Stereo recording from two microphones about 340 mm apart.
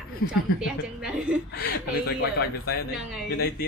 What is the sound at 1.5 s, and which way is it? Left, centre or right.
Speech, left.